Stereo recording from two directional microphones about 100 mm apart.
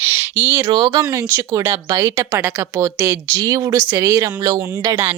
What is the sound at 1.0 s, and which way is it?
A woman's voice, 35° right (ahead or behind).